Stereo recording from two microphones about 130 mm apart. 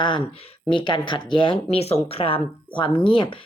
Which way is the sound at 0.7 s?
40° left (ahead or behind).